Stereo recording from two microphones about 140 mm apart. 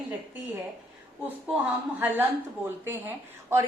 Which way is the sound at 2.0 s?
15° right (ahead or behind).